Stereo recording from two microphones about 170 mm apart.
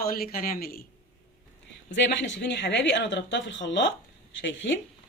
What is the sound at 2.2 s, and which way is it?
Speech, 90° left.